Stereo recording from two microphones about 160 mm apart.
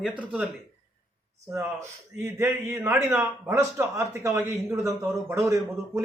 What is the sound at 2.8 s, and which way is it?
A man's voice, 15° right (ahead or behind).